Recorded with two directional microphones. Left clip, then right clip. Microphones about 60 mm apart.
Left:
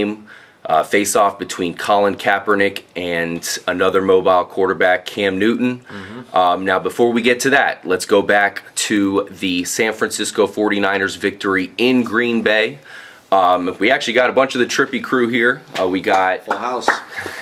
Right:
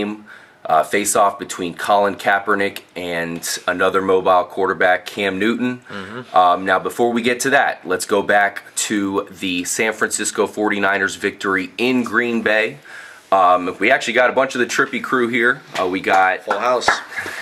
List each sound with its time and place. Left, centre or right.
0.7 s speech: centre
14.8 s speech: right